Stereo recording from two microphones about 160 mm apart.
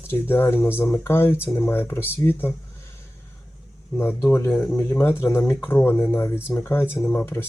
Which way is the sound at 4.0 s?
15° left (ahead or behind).